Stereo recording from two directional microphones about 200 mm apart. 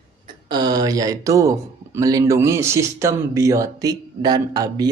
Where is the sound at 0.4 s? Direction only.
20° right (ahead or behind).